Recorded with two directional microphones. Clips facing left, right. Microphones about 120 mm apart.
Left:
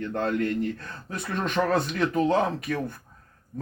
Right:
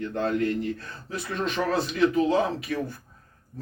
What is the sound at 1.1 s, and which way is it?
Speech, 50° left (ahead or behind).